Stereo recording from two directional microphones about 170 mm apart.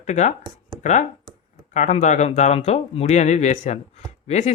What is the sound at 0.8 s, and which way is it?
Speech, 45° left (ahead or behind).